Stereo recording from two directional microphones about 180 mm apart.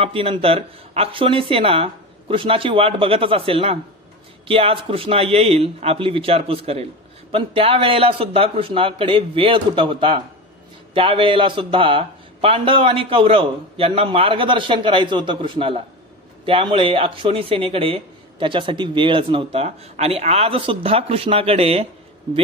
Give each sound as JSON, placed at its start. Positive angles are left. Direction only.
{"t": 0.0, "sound": "a man's voice", "side_deg": -30}